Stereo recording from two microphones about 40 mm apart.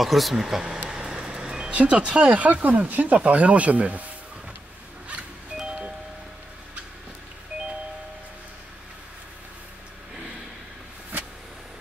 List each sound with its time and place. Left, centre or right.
0.0 s speech: centre
0.8 s vehicle: centre
1.7 s speech: right
5.7 s music: right